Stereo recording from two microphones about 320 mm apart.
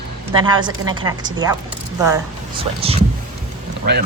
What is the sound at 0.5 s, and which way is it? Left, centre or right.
A woman's voice, centre.